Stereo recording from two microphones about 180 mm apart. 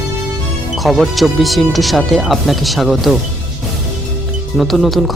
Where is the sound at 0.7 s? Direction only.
Centre (ahead or behind).